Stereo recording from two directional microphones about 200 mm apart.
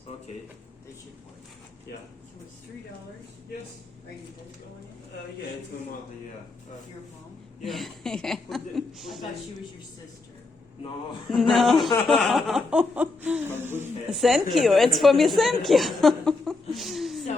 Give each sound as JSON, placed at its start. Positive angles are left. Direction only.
{"t": 7.6, "sound": "a woman's voice", "side_deg": 0}
{"t": 11.3, "sound": "a woman's voice", "side_deg": 0}
{"t": 14.2, "sound": "a woman's voice", "side_deg": 0}